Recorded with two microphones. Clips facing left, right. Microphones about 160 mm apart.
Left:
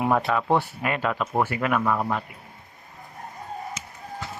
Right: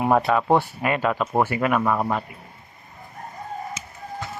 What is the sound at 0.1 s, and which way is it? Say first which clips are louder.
Speech: right 5 dB; 35° right (ahead or behind).